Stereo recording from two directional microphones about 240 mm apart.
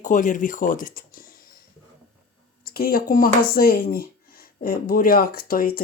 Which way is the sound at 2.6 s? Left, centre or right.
Left.